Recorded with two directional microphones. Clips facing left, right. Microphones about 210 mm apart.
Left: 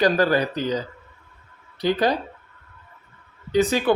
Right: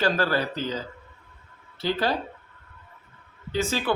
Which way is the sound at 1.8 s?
15° left (ahead or behind).